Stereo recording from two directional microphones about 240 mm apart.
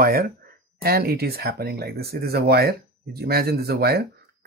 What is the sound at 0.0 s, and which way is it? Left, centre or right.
Speech, right.